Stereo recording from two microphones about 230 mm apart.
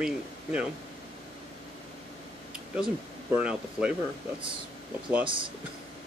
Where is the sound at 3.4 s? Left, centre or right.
Centre.